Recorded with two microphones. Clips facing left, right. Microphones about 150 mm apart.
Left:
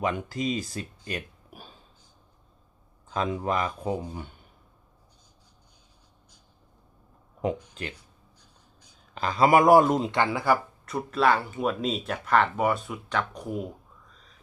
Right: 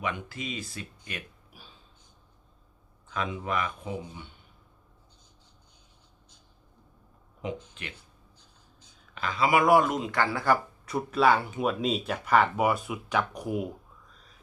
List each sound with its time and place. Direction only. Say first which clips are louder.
0.0 s speech: left 6 dB; 40° left (ahead or behind)
3.1 s speech: left 4 dB; 40° left (ahead or behind)
7.9 s writing: even; 25° right (ahead or behind)
9.1 s speech: left 5 dB; 40° left (ahead or behind)
10.2 s speech: right 2 dB; 10° left (ahead or behind)
10.8 s speech: even; centre (ahead or behind)
14.1 s a sound: even; centre (ahead or behind)